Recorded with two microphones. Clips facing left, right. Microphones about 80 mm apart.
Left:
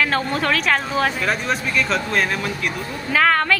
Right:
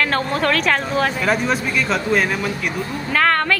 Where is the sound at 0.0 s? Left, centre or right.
Centre.